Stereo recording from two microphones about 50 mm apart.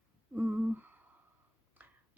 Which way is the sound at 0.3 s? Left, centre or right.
Right.